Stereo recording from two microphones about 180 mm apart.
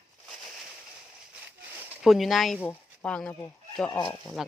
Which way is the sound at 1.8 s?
Centre (ahead or behind).